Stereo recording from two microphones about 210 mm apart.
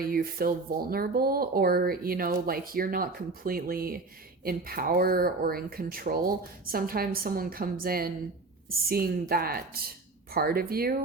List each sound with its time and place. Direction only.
0.0 s speech: 45° right (ahead or behind)